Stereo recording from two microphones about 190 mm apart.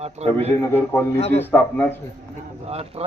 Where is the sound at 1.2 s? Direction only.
35° left (ahead or behind).